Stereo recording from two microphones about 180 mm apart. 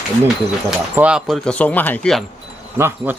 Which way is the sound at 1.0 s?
5° right (ahead or behind).